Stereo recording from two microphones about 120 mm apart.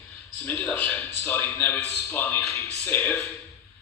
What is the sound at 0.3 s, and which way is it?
A man's voice, 15° left (ahead or behind).